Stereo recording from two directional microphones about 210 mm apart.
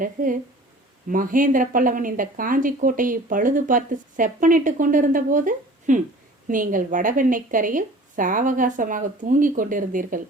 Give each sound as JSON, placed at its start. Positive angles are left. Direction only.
{"t": 0.0, "sound": "speech", "side_deg": -40}